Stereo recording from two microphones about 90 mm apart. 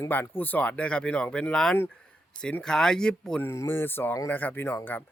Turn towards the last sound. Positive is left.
turn(degrees=20)  # may be behind; listen again after turning